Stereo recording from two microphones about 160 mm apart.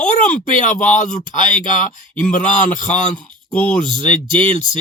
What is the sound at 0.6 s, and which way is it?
Speech, 50° left (ahead or behind).